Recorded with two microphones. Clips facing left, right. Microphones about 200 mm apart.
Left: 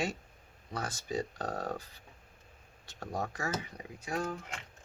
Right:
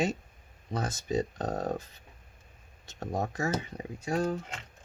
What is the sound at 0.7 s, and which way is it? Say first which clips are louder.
Speech: right 5 dB; 20° right (ahead or behind).